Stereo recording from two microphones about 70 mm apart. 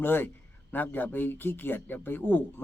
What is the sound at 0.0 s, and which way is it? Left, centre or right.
A man's voice, left.